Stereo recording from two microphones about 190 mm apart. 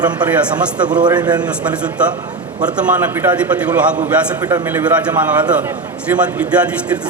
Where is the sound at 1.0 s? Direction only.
20° right (ahead or behind).